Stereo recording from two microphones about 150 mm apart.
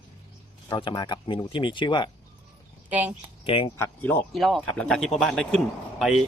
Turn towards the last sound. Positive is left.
turn(degrees=0)  # may be behind; listen again after turning